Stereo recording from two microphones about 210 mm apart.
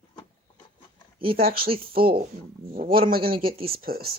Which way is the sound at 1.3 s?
45° right (ahead or behind).